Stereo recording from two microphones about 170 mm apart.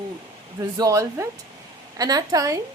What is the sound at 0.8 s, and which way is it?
A woman's voice, 20° right (ahead or behind).